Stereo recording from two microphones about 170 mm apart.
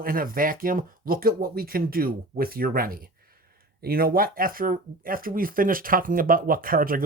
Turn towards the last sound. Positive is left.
turn(degrees=-55)  # may be behind; listen again after turning